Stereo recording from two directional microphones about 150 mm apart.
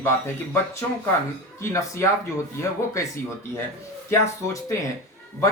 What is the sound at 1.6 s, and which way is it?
Speech, 20° left (ahead or behind).